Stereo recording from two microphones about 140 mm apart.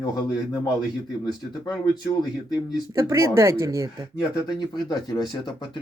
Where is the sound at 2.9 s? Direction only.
20° right (ahead or behind).